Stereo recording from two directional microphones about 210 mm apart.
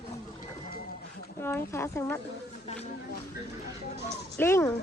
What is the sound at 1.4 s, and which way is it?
Speech, 10° left (ahead or behind).